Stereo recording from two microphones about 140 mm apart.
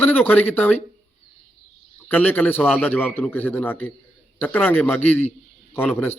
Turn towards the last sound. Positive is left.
turn(degrees=10)  # may be behind; listen again after turning